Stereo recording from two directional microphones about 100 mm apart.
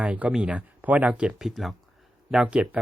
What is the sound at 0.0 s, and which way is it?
Speech, 10° right (ahead or behind).